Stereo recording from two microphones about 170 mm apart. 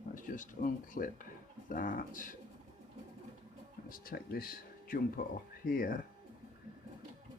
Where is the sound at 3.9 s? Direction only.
60° left (ahead or behind).